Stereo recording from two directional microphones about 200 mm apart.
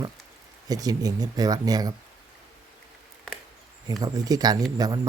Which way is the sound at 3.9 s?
20° right (ahead or behind).